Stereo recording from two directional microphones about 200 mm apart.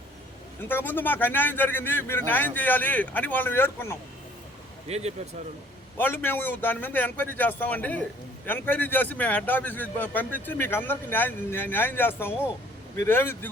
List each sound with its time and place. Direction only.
0.7 s a man's voice: 10° left (ahead or behind)
4.9 s speech: 30° right (ahead or behind)
6.0 s a man's voice: 10° left (ahead or behind)